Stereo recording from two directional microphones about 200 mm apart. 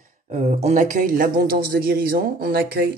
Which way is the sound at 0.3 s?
35° right (ahead or behind).